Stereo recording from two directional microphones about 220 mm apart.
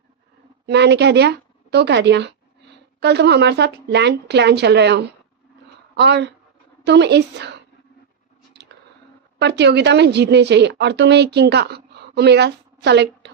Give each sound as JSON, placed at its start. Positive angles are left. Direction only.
{"t": 0.6, "sound": "a woman's voice", "side_deg": -50}
{"t": 9.4, "sound": "a woman's voice", "side_deg": -50}